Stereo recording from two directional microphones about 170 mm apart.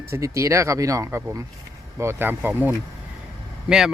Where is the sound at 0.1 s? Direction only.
20° right (ahead or behind).